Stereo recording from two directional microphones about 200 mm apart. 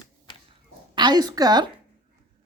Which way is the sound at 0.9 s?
20° right (ahead or behind).